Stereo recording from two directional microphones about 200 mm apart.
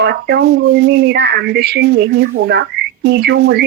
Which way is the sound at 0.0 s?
55° right (ahead or behind).